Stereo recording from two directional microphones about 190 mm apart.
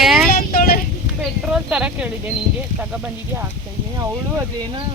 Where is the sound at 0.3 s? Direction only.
50° left (ahead or behind).